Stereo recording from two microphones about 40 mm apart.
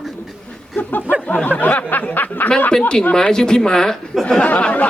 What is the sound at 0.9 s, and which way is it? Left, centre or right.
Speech, left.